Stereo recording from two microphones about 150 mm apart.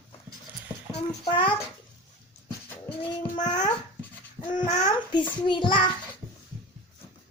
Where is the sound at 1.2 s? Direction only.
35° left (ahead or behind).